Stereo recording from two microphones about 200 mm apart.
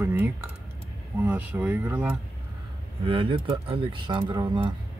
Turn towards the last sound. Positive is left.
turn(degrees=-25)  # may be behind; listen again after turning